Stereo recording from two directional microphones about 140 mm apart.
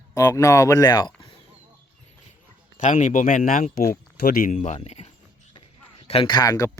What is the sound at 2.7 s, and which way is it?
Speech, 65° left (ahead or behind).